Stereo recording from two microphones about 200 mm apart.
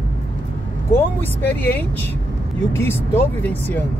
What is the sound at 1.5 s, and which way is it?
Speech, 10° left (ahead or behind).